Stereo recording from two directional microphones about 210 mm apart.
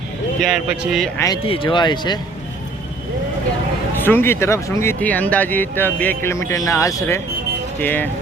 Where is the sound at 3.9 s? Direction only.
10° left (ahead or behind).